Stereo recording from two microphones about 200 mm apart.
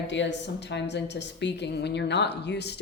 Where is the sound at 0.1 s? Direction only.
60° left (ahead or behind).